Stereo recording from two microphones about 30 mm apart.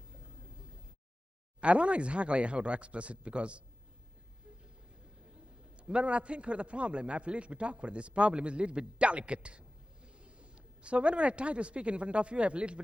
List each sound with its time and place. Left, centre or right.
1.6 s speech: right
5.2 s a man's voice: right